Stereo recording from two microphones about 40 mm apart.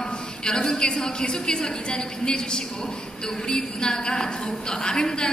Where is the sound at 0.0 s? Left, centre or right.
Centre.